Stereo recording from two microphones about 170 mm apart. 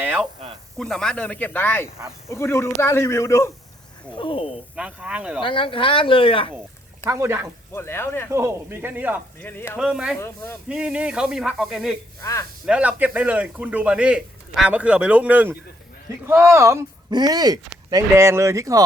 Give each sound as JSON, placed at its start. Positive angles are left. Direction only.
{"t": 0.0, "sound": "snake", "side_deg": -10}
{"t": 0.8, "sound": "a man's voice", "side_deg": 0}
{"t": 4.1, "sound": "speech", "side_deg": 30}
{"t": 4.7, "sound": "speech", "side_deg": -5}
{"t": 5.4, "sound": "speech", "side_deg": 30}
{"t": 7.1, "sound": "a man's voice", "side_deg": -15}
{"t": 7.7, "sound": "a man's voice", "side_deg": 15}
{"t": 8.3, "sound": "a man's voice", "side_deg": -15}
{"t": 9.4, "sound": "a man's voice", "side_deg": 10}
{"t": 9.7, "sound": "speech", "side_deg": -5}
{"t": 10.2, "sound": "a man's voice", "side_deg": 15}
{"t": 10.7, "sound": "speech", "side_deg": -5}
{"t": 12.2, "sound": "speech", "side_deg": 20}
{"t": 12.6, "sound": "a man's voice", "side_deg": -5}